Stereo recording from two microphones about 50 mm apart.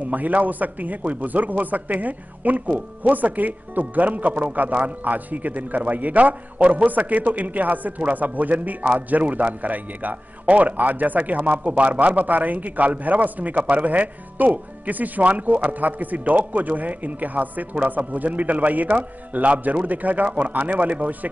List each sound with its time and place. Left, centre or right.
0.1 s a man's voice: right